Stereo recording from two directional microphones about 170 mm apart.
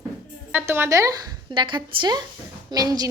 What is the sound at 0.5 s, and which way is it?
A woman's voice, 15° right (ahead or behind).